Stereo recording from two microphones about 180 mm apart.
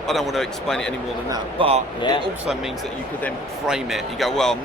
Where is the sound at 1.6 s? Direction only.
30° right (ahead or behind).